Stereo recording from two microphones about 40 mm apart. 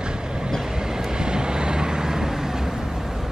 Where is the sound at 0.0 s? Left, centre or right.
Right.